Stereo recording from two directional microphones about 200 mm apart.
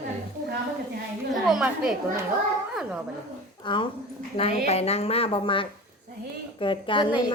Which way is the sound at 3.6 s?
25° left (ahead or behind).